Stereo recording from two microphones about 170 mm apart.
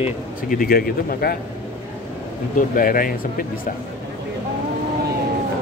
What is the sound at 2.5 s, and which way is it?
Speech, 55° left (ahead or behind).